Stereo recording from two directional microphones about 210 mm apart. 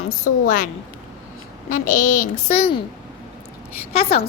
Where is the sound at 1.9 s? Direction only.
90° left.